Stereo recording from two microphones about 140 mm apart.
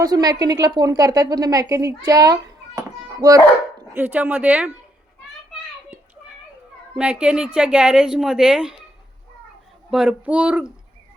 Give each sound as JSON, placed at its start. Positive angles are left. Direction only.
{"t": 0.0, "sound": "a woman's voice", "side_deg": -30}
{"t": 4.0, "sound": "a woman's voice", "side_deg": -10}
{"t": 6.9, "sound": "a woman's voice", "side_deg": -5}
{"t": 9.9, "sound": "a woman's voice", "side_deg": -5}